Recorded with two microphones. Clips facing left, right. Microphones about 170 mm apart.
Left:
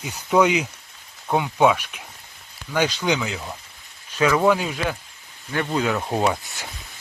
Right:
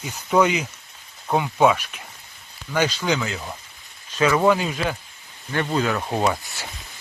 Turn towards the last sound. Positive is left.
turn(degrees=0)  # may be behind; listen again after turning